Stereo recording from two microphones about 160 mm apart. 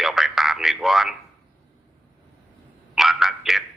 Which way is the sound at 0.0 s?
Centre (ahead or behind).